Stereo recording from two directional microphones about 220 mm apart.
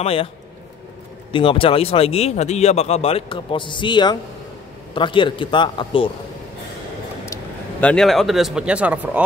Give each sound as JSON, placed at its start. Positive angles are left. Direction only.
{"t": 0.0, "sound": "speech", "side_deg": 25}
{"t": 1.3, "sound": "speech", "side_deg": 25}
{"t": 7.8, "sound": "speech", "side_deg": 5}